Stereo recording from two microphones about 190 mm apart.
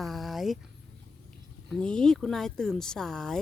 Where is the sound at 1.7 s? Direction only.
5° left (ahead or behind).